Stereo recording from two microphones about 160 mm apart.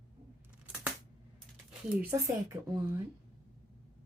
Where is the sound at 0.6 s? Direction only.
10° right (ahead or behind).